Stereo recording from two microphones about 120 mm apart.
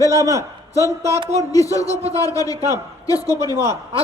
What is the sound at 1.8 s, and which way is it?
Speech, 60° right (ahead or behind).